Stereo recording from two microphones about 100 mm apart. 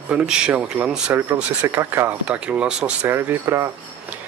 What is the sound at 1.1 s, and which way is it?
Speech, 25° right (ahead or behind).